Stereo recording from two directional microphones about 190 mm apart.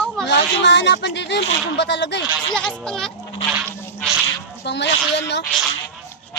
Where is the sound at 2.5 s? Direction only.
5° left (ahead or behind).